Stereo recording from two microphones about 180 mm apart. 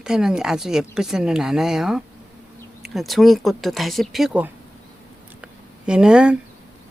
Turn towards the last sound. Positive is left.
turn(degrees=-5)  # may be behind; listen again after turning